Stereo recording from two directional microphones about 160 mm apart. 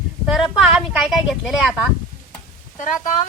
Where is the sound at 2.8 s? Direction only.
50° left (ahead or behind).